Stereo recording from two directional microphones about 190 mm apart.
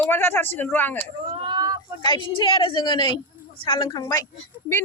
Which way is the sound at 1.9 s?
25° left (ahead or behind).